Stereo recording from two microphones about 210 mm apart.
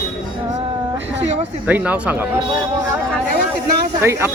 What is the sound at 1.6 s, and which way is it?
Speech, 5° right (ahead or behind).